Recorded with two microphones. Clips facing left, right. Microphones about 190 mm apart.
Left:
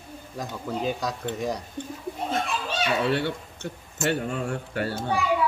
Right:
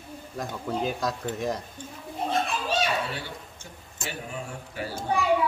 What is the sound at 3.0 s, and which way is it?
A man's voice, 65° left (ahead or behind).